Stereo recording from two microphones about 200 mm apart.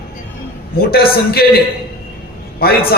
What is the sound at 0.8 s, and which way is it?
A man's voice, 50° left (ahead or behind).